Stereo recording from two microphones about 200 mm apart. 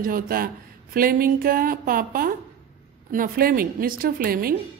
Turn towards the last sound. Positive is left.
turn(degrees=-45)  # may be behind; listen again after turning